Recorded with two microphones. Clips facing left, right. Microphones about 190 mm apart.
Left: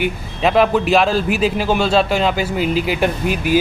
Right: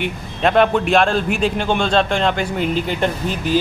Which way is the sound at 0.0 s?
5° left (ahead or behind).